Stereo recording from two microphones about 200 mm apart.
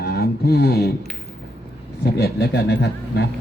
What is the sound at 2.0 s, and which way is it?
Speech, 55° left (ahead or behind).